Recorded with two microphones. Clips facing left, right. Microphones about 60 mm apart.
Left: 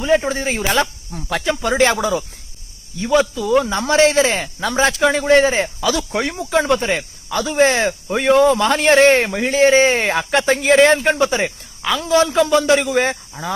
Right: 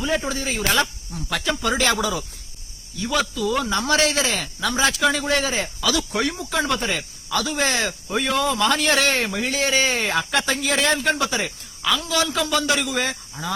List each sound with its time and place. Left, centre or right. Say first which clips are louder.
0.0 s speech: left 7 dB; left